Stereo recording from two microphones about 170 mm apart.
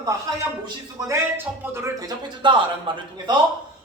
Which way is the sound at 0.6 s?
20° right (ahead or behind).